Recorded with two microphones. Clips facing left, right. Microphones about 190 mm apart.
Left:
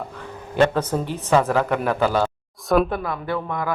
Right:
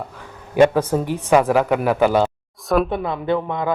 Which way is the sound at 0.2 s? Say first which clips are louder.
Right 4 dB; 10° right (ahead or behind).